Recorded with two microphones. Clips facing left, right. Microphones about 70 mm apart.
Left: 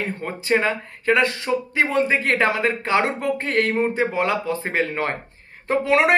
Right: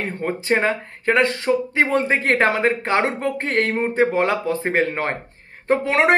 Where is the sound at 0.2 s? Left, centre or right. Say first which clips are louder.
Right 2 dB; right.